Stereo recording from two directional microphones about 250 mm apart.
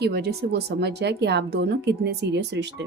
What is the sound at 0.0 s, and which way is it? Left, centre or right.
Speech, right.